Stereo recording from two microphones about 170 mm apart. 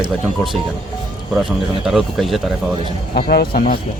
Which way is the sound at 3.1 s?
60° left (ahead or behind).